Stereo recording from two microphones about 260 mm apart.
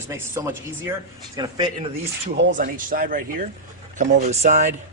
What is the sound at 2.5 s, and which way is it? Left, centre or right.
Speech, right.